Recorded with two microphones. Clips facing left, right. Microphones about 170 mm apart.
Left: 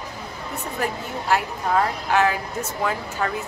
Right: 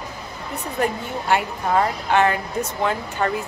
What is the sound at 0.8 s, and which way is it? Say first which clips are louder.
Speech: right 4 dB; centre (ahead or behind).